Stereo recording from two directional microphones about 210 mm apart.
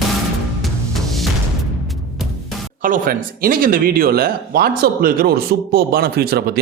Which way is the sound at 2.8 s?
40° right (ahead or behind).